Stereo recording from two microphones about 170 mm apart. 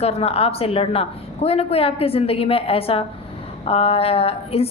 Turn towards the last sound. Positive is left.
turn(degrees=35)  # may be behind; listen again after turning